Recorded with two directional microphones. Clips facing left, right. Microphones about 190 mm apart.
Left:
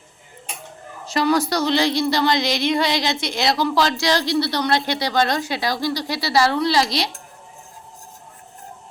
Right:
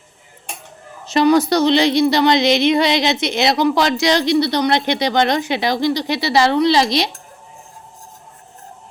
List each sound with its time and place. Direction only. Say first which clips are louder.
1.0 s a woman's voice: right 6 dB; 20° right (ahead or behind)